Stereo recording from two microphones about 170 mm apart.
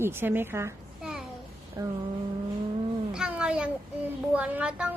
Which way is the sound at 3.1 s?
5° right (ahead or behind).